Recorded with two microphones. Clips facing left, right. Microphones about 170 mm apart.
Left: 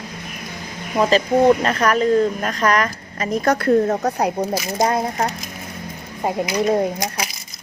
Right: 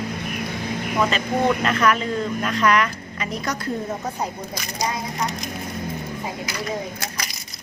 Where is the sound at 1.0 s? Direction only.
35° left (ahead or behind); by 4.3 s 70° left (ahead or behind).